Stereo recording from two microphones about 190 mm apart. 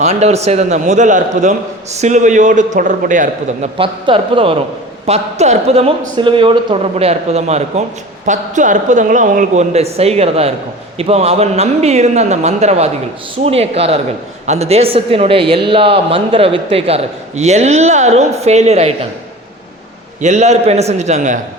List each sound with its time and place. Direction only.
0.0 s a man's voice: 35° right (ahead or behind)
20.2 s a man's voice: 35° right (ahead or behind)